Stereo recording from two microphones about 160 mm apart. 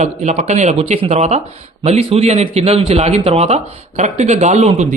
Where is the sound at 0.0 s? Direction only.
45° right (ahead or behind).